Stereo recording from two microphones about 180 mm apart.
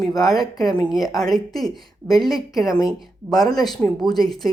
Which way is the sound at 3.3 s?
20° left (ahead or behind).